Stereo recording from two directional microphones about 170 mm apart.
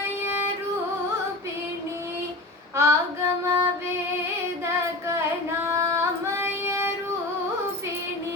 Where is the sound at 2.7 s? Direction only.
15° right (ahead or behind).